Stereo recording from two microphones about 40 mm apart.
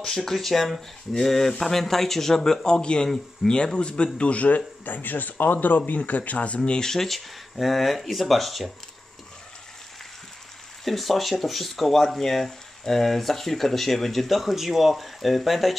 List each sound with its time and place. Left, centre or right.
0.0 s speech: centre
2.6 s a man's voice: left
6.9 s speech: centre
10.8 s speech: centre